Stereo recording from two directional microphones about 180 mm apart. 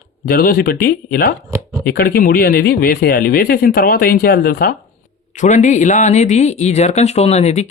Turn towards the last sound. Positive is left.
turn(degrees=40)  # may be behind; listen again after turning